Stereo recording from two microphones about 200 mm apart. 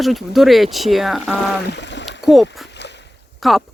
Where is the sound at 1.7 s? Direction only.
60° left (ahead or behind).